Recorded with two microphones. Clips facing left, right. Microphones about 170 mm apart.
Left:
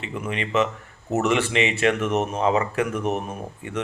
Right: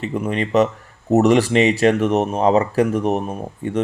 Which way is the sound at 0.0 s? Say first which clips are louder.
Right 7 dB; 40° right (ahead or behind).